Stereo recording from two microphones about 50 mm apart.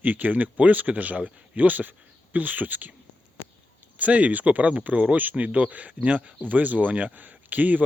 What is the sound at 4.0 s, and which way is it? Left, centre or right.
A man's voice, right.